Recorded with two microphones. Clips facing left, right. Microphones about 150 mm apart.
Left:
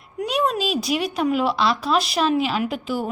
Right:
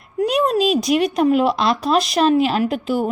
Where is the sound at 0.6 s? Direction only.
5° left (ahead or behind).